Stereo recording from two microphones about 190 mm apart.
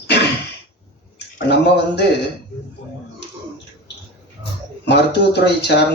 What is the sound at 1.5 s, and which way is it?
Speech, 60° left (ahead or behind).